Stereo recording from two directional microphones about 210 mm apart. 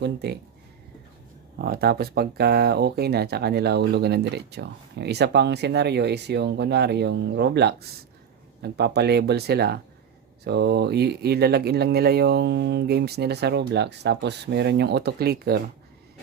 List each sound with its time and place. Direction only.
0.0 s speech: 50° right (ahead or behind)
1.5 s speech: 45° right (ahead or behind)